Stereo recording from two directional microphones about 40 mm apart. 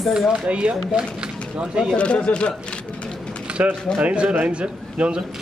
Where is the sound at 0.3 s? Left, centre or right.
Right.